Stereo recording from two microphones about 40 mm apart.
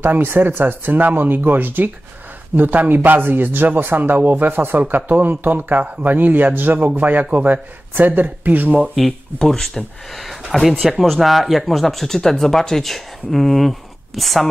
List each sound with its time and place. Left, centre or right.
0.0 s speech: right
8.9 s speech: centre